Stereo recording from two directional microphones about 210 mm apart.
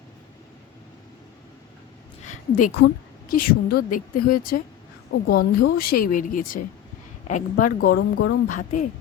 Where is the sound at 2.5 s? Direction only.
90° left.